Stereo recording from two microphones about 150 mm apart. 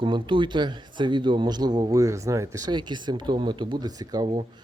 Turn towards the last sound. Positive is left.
turn(degrees=-25)  # may be behind; listen again after turning